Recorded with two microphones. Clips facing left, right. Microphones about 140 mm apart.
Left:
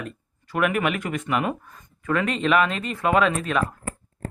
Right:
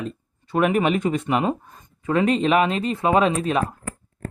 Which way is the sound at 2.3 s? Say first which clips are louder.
Right 2 dB; 35° right (ahead or behind).